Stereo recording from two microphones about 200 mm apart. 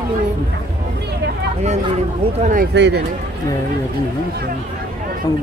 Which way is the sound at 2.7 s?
60° right (ahead or behind).